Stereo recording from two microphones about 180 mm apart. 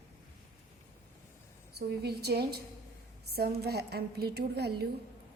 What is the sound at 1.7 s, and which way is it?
A woman's voice, 65° right (ahead or behind).